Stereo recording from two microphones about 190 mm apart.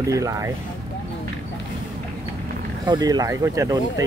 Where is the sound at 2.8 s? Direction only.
20° right (ahead or behind).